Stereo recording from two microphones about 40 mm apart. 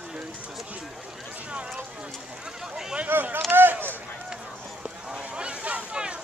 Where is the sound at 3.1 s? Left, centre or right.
Right.